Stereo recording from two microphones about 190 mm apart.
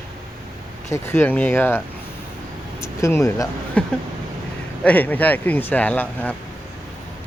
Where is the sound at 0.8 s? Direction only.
15° left (ahead or behind).